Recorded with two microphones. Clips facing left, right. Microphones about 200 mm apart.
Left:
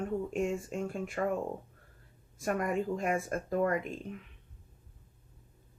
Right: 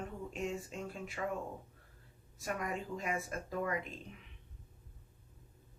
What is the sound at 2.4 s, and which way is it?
Speech, 50° left (ahead or behind).